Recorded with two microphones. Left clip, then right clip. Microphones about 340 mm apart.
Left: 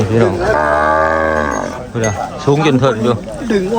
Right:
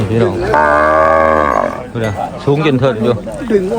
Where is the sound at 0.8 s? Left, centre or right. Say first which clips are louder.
Right 3 dB; right.